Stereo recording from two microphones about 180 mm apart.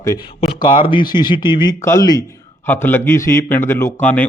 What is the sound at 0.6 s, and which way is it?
A man's voice, 25° left (ahead or behind).